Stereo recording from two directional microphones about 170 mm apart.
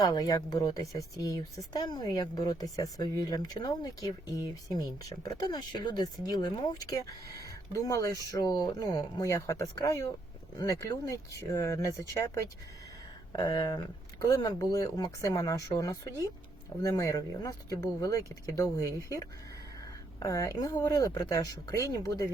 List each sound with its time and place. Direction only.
0.0 s speech: 20° left (ahead or behind)